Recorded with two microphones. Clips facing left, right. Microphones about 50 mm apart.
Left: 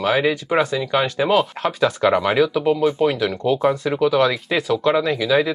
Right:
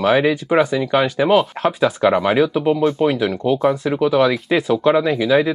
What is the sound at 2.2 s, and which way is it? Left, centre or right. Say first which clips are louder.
Speech: right 2 dB; right.